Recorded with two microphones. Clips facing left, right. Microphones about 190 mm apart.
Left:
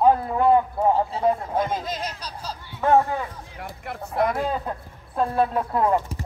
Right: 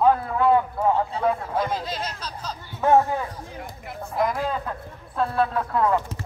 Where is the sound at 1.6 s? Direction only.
20° left (ahead or behind).